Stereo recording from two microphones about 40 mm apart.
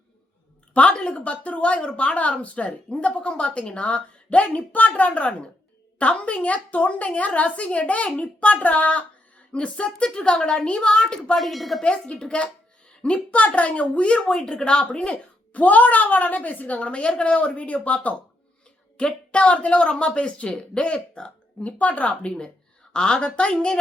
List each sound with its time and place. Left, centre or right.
0.7 s a sound: left
1.1 s a woman's voice: left
11.3 s a woman's voice: centre
11.8 s a woman's voice: left
14.3 s a woman's voice: left
15.5 s speech: left
18.9 s a woman's voice: left
21.6 s speech: left
22.9 s a woman's voice: centre